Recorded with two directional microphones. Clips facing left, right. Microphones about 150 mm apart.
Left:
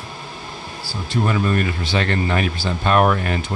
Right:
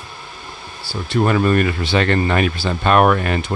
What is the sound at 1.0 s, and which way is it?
Speech, 60° right (ahead or behind).